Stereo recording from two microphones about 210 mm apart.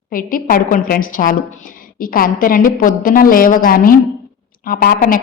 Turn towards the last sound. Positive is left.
turn(degrees=40)  # may be behind; listen again after turning